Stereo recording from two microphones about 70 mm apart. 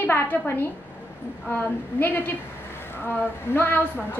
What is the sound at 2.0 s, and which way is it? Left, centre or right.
A woman's voice, left.